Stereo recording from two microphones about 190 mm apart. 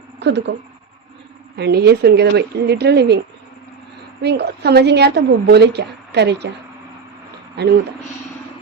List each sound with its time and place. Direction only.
0.2 s speech: 65° right (ahead or behind)
1.5 s a woman's voice: 60° right (ahead or behind)
4.2 s a woman's voice: 60° right (ahead or behind)
7.6 s a woman's voice: 60° right (ahead or behind)